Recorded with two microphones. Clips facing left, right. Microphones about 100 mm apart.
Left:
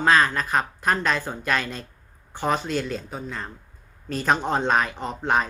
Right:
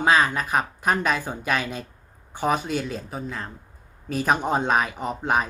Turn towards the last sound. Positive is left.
turn(degrees=-5)  # may be behind; listen again after turning